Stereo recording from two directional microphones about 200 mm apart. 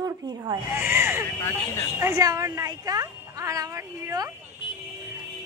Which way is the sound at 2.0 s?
15° right (ahead or behind).